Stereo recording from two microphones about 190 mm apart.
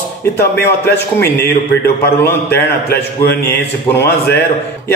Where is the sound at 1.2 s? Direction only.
10° left (ahead or behind).